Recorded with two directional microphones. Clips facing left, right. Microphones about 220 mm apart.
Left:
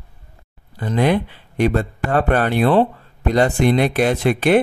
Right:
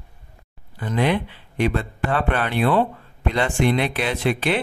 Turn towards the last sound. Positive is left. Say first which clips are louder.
# left 6 dB
turn(degrees=50)  # may be behind; listen again after turning